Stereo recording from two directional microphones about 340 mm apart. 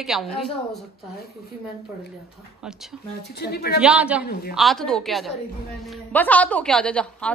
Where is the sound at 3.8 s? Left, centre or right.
Centre.